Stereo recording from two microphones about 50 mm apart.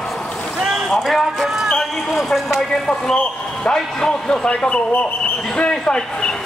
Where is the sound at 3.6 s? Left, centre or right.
Centre.